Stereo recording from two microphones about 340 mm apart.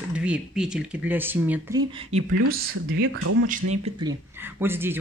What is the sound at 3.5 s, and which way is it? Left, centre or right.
Speech, centre.